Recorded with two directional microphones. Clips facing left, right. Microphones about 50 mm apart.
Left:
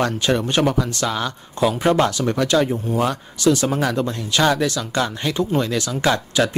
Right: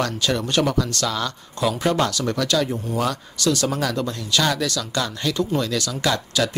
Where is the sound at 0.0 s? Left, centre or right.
Left.